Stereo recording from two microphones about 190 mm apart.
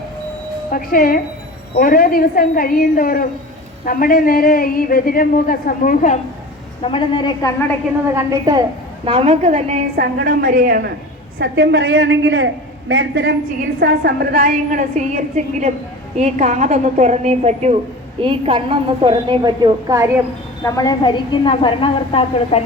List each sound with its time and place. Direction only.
0.7 s a woman's voice: 50° left (ahead or behind)
6.8 s a woman's voice: 25° left (ahead or behind)
8.0 s a woman's voice: 15° right (ahead or behind)
9.0 s a woman's voice: 30° right (ahead or behind)
10.0 s a woman's voice: 50° right (ahead or behind)
11.3 s a woman's voice: 65° right (ahead or behind)
13.7 s a woman's voice: 60° right (ahead or behind); by 20.1 s 20° right (ahead or behind)
20.7 s a woman's voice: 20° left (ahead or behind)